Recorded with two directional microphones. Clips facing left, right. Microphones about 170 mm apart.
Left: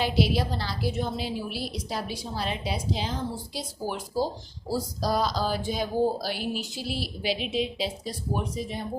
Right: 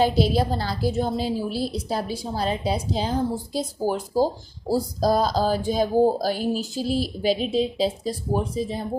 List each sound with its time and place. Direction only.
0.0 s a woman's voice: 45° right (ahead or behind)